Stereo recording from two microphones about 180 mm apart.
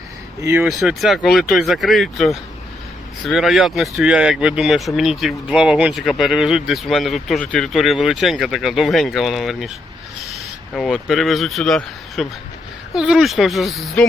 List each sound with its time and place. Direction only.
0.4 s speech: 10° right (ahead or behind)
0.7 s speech: centre (ahead or behind)